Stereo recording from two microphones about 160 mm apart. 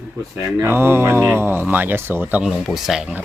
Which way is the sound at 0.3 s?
15° right (ahead or behind).